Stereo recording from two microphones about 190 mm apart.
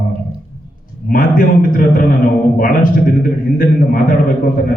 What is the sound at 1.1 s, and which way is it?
A man's voice, 45° left (ahead or behind).